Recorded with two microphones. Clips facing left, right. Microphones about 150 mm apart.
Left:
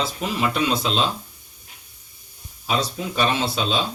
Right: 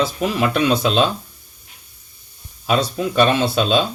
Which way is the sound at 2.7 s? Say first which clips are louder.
Right 5 dB; 60° right (ahead or behind).